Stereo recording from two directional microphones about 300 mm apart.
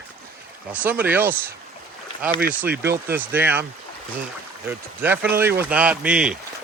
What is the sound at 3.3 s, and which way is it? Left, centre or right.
Speech, centre.